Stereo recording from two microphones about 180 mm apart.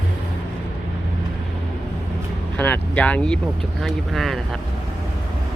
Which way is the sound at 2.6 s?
10° left (ahead or behind).